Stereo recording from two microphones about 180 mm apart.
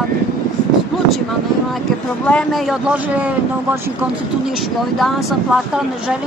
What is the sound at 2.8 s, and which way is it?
Speech, 10° right (ahead or behind).